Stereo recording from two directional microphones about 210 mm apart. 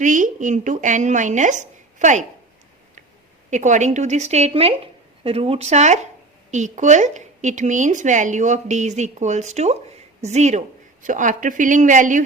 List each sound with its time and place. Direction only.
0.0 s a woman's voice: 35° right (ahead or behind)
3.5 s a woman's voice: 35° right (ahead or behind)